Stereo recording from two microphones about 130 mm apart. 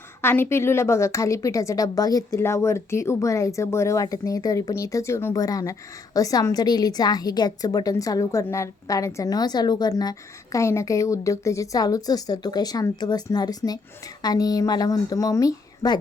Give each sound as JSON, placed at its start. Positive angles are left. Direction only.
{"t": 0.2, "sound": "a woman's voice", "side_deg": 20}